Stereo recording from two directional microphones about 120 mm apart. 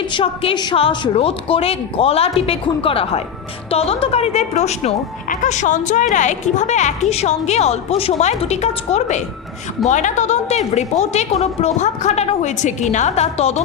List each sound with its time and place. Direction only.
0.1 s a woman's voice: 45° left (ahead or behind); by 9.2 s 70° left (ahead or behind)
9.9 s speech: 85° left; by 13.6 s 60° left (ahead or behind)